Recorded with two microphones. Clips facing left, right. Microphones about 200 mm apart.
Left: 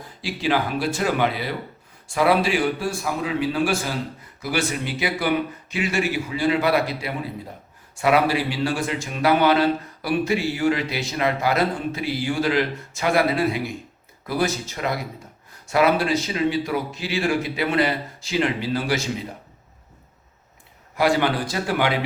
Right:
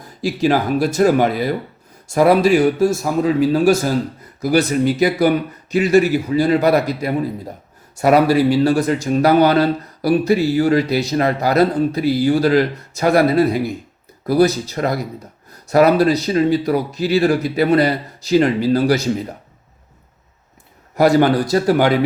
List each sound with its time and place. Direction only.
0.2 s speech: 45° right (ahead or behind)
20.9 s speech: 40° right (ahead or behind)